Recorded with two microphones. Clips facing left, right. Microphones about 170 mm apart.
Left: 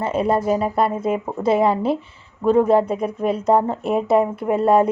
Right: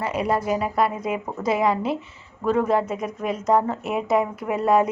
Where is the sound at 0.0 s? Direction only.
25° left (ahead or behind).